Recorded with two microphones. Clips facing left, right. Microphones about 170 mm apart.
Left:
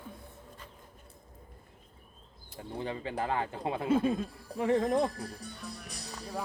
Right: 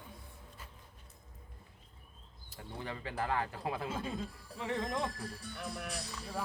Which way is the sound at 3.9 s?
55° left (ahead or behind).